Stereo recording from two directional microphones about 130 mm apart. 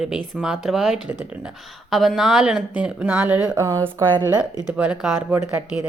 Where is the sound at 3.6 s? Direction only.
25° right (ahead or behind).